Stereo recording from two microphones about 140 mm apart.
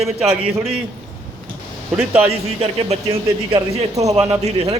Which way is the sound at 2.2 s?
45° right (ahead or behind).